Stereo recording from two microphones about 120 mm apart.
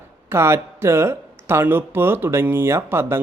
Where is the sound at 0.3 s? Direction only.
20° right (ahead or behind).